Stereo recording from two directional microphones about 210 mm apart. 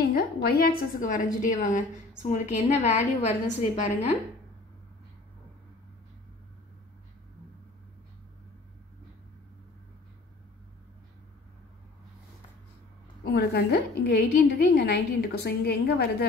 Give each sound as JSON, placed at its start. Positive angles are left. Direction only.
{"t": 0.1, "sound": "a woman's voice", "side_deg": 45}
{"t": 13.2, "sound": "a woman's voice", "side_deg": 50}